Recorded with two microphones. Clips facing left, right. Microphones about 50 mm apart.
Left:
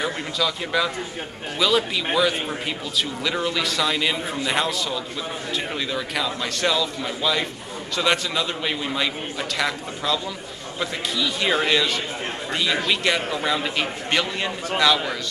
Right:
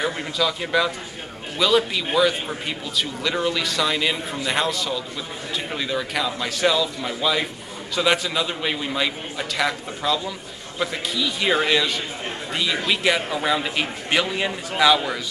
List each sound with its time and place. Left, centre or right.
0.0 s a man's voice: centre